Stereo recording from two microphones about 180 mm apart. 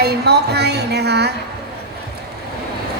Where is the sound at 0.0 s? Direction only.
65° right (ahead or behind).